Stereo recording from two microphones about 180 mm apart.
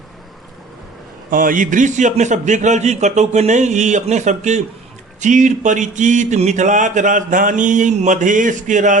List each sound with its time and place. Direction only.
1.3 s a man's voice: 50° right (ahead or behind)